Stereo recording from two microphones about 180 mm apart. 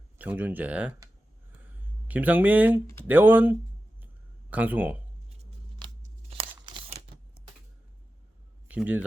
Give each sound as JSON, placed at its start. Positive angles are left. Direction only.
{"t": 0.2, "sound": "speech", "side_deg": -10}
{"t": 2.0, "sound": "speech", "side_deg": -10}
{"t": 2.8, "sound": "speech", "side_deg": 15}
{"t": 3.1, "sound": "speech", "side_deg": -10}
{"t": 4.0, "sound": "a sound", "side_deg": -10}
{"t": 6.3, "sound": "tearing", "side_deg": -30}
{"t": 8.6, "sound": "speech", "side_deg": -10}